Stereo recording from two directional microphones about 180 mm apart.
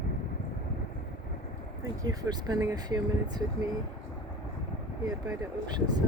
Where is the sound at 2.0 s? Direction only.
20° right (ahead or behind).